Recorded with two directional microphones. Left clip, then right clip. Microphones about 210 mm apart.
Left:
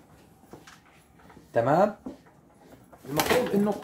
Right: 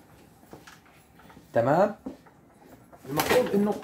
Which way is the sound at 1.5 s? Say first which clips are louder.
Even; 10° right (ahead or behind).